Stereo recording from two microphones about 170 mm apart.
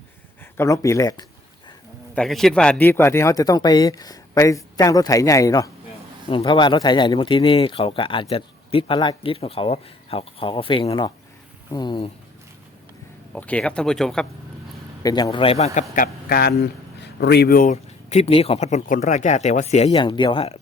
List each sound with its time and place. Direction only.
0.5 s speech: 15° left (ahead or behind)
2.1 s speech: centre (ahead or behind); by 5.7 s 20° left (ahead or behind)
6.2 s speech: 30° left (ahead or behind)
13.3 s speech: 5° left (ahead or behind)
15.0 s speech: 25° left (ahead or behind); by 16.0 s 40° left (ahead or behind)
16.3 s speech: 70° left (ahead or behind); by 20.6 s 35° left (ahead or behind)